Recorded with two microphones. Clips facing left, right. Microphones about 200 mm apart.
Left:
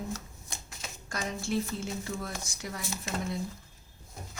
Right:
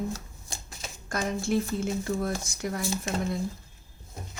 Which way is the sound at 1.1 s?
50° right (ahead or behind).